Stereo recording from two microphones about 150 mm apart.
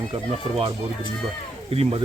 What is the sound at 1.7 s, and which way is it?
Speech, 40° right (ahead or behind).